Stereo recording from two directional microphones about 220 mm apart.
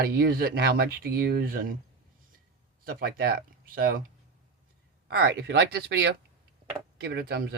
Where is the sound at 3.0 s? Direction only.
45° right (ahead or behind).